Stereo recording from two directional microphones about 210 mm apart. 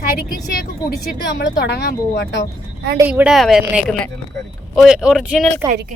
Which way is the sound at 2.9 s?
10° right (ahead or behind).